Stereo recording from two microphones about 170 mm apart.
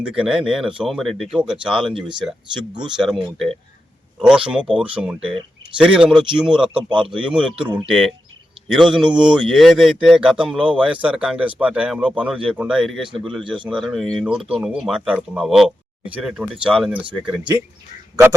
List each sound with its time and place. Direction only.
0.0 s speech: 5° right (ahead or behind)
2.6 s speech: 25° right (ahead or behind)
2.9 s speech: 5° right (ahead or behind)
7.6 s speech: 25° right (ahead or behind)
7.9 s speech: centre (ahead or behind)
17.2 s speech: 25° right (ahead or behind)